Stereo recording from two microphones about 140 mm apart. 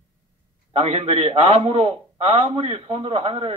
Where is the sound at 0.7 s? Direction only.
45° right (ahead or behind).